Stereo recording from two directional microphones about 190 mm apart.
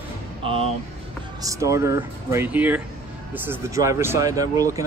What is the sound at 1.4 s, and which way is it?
Speech, 15° right (ahead or behind).